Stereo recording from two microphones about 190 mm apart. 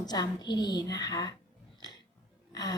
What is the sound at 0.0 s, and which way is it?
A woman's voice, 20° left (ahead or behind).